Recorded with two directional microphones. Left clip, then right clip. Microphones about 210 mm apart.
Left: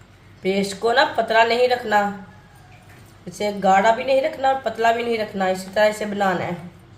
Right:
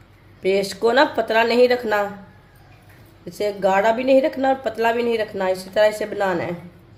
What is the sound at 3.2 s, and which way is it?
A woman's voice, 40° right (ahead or behind).